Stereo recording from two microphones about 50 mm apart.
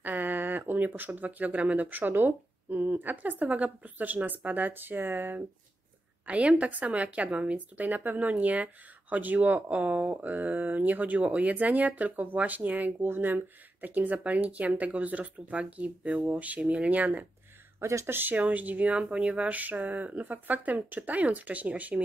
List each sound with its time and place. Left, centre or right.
0.0 s speech: right
6.2 s speech: right
17.7 s speech: right
18.0 s speech: right
18.3 s speech: right